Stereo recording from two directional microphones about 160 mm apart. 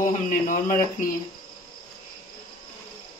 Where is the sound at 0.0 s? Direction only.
55° left (ahead or behind).